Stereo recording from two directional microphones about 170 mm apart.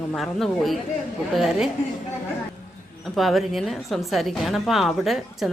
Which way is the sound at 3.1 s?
Centre (ahead or behind).